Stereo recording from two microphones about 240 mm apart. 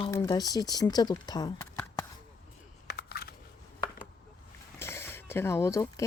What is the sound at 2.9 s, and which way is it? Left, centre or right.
Computer keyboard, left.